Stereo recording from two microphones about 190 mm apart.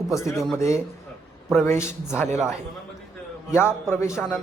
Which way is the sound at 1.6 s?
15° left (ahead or behind).